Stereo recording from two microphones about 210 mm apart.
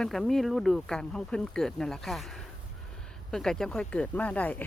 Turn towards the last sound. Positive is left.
turn(degrees=5)  # may be behind; listen again after turning